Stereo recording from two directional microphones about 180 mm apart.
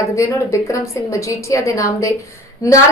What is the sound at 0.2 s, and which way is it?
A woman's voice, 15° left (ahead or behind).